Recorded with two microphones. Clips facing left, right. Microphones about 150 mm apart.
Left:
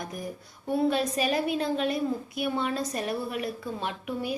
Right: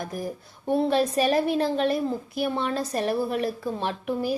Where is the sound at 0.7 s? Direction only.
30° right (ahead or behind).